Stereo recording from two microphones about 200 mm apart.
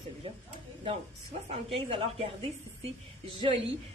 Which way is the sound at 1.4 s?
30° right (ahead or behind).